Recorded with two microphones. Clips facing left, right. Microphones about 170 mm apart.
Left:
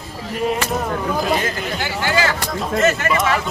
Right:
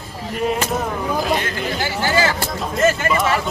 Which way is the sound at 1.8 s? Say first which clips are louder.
Right 1 dB; 40° right (ahead or behind).